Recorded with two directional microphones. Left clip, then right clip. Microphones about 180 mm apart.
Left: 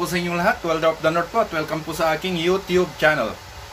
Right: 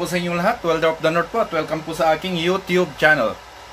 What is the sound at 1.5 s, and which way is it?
Speech, centre (ahead or behind).